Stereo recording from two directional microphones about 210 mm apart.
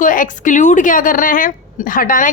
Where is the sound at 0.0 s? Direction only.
40° left (ahead or behind).